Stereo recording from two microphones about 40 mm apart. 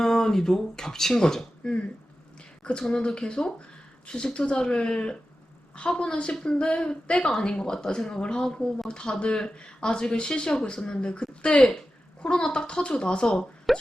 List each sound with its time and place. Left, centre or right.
0.0 s speech: centre
13.2 s speech: centre